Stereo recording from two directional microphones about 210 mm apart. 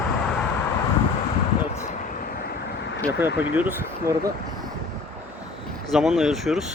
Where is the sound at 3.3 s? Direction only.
5° right (ahead or behind).